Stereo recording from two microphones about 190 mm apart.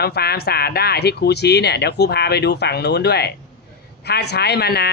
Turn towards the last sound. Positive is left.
turn(degrees=60)  # may be behind; listen again after turning